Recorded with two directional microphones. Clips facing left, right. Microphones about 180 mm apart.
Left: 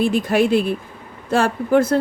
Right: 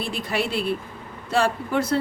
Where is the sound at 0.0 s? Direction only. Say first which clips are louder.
Left 10 dB; 50° left (ahead or behind).